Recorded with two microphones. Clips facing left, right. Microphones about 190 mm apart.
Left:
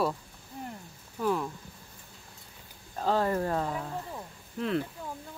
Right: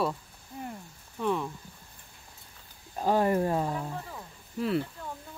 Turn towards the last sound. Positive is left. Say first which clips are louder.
# right 1 dB
turn(degrees=-5)  # may be behind; listen again after turning